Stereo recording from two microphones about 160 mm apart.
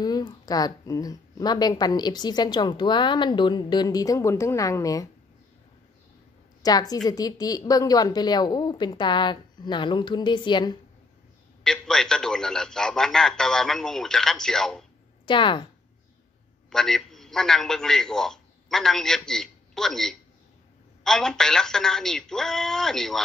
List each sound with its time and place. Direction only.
0.0 s speech: 25° left (ahead or behind)
6.6 s speech: 25° left (ahead or behind)
11.6 s a man's voice: 5° left (ahead or behind)
15.2 s speech: 30° left (ahead or behind)
16.7 s a man's voice: centre (ahead or behind)